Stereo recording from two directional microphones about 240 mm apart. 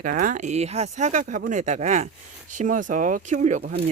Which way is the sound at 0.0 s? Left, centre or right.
Right.